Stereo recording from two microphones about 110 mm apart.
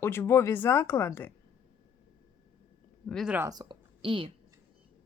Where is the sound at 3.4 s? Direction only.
40° right (ahead or behind).